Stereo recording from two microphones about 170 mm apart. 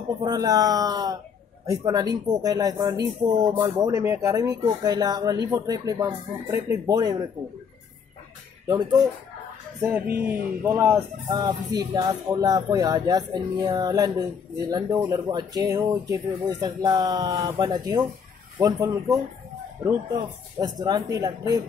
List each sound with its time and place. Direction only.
0.2 s speech: 25° right (ahead or behind)
8.6 s speech: 20° right (ahead or behind)
20.2 s speech: 25° right (ahead or behind)